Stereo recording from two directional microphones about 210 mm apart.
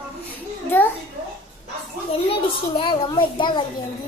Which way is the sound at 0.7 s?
10° left (ahead or behind).